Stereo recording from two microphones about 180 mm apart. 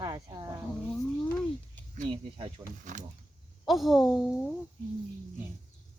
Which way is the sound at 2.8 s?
45° right (ahead or behind).